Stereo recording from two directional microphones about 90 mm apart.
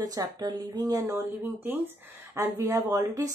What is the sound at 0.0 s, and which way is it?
Speech, 45° right (ahead or behind).